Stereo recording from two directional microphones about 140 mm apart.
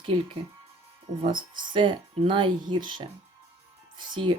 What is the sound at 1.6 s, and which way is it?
Speech, 35° right (ahead or behind).